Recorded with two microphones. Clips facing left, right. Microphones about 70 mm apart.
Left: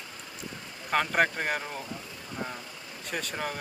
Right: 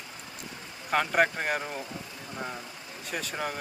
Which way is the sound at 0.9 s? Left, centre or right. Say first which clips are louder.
Right 1 dB; centre.